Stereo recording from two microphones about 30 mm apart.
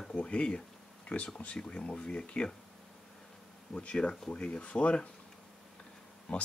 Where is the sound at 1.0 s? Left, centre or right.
Left.